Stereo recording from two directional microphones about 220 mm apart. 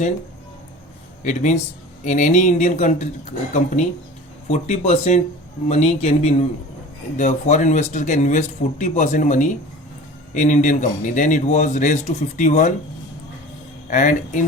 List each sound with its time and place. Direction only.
1.2 s a man's voice: 35° left (ahead or behind)
13.9 s a man's voice: 35° left (ahead or behind)